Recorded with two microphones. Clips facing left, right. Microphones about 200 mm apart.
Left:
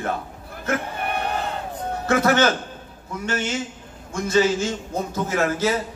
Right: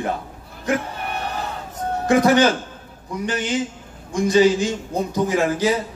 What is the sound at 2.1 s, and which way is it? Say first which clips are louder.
A man's voice: right 3 dB; 15° right (ahead or behind).